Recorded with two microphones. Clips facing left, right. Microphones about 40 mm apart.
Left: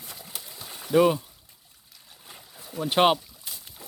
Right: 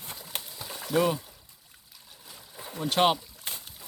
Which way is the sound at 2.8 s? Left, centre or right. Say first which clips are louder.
Left 3 dB; centre.